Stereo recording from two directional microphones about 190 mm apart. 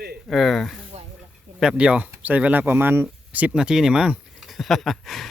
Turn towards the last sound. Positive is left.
turn(degrees=0)  # may be behind; listen again after turning